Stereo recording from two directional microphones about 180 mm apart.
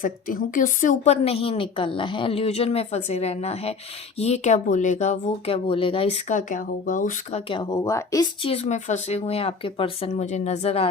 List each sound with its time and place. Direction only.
0.0 s speech: 50° left (ahead or behind)